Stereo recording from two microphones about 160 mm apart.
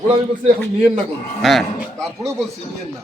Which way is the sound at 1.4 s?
Centre (ahead or behind).